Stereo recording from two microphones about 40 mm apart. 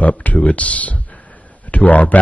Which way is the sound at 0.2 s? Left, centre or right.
Left.